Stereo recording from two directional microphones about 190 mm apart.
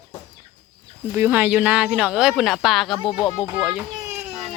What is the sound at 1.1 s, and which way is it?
Speech, 10° right (ahead or behind).